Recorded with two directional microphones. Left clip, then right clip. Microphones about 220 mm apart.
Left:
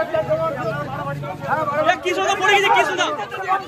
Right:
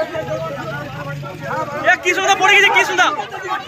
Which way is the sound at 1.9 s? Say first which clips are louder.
Right 9 dB; 5° left (ahead or behind).